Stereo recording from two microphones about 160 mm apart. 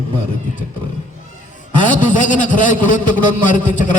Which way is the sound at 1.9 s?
50° left (ahead or behind).